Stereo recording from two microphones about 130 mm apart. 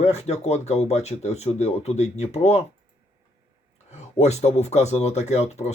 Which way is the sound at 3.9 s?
55° left (ahead or behind).